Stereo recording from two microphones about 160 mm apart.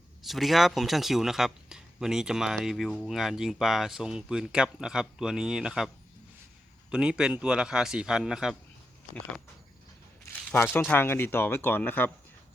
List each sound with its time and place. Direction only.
0.3 s speech: centre (ahead or behind)
6.9 s speech: 5° right (ahead or behind)
10.8 s speech: 10° left (ahead or behind)